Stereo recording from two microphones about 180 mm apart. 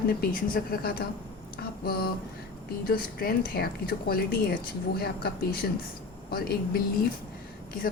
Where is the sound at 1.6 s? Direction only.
55° left (ahead or behind).